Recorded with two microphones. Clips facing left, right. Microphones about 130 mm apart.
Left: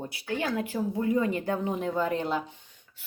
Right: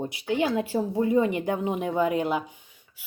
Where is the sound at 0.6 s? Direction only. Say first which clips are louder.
Right 4 dB; 30° right (ahead or behind).